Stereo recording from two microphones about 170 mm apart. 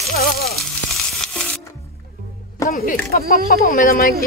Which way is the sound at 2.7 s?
60° left (ahead or behind).